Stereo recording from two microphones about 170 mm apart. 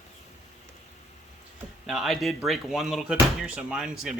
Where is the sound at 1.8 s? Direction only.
Centre (ahead or behind).